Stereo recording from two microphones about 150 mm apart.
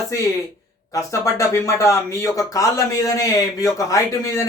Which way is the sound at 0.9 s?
20° left (ahead or behind).